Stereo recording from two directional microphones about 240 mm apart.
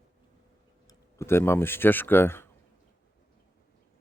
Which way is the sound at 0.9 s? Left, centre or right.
Centre.